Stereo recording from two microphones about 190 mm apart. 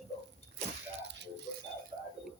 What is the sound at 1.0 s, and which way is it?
Rattle, 65° right (ahead or behind).